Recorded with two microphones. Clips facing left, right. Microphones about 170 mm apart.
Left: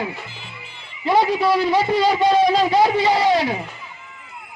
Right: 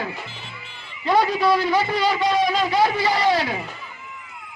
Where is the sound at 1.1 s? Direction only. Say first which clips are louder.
Left 2 dB; 20° left (ahead or behind).